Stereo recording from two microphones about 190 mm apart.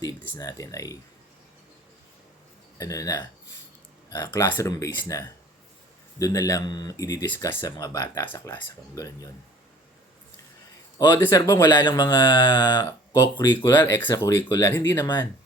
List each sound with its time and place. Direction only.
0.3 s speech: 20° left (ahead or behind)
2.7 s speech: 20° left (ahead or behind)
10.9 s speech: 15° left (ahead or behind)